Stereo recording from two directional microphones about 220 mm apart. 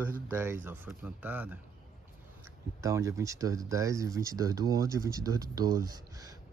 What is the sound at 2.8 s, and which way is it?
Speech, 15° right (ahead or behind).